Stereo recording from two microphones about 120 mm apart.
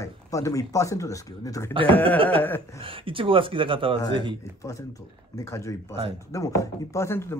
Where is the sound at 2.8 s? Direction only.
45° right (ahead or behind).